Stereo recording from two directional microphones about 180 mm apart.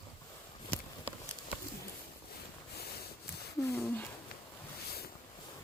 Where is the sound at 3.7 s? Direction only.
15° left (ahead or behind).